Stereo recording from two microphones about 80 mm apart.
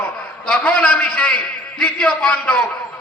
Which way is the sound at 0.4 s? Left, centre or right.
Centre.